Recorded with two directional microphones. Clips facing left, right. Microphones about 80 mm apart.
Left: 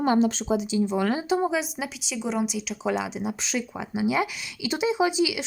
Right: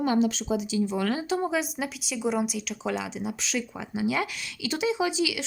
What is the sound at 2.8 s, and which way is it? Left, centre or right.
Speech, centre.